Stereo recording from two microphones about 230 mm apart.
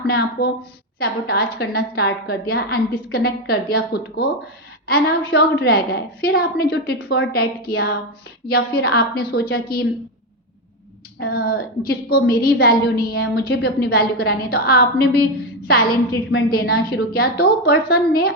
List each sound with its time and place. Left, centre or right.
0.1 s a woman's voice: left
11.2 s a woman's voice: left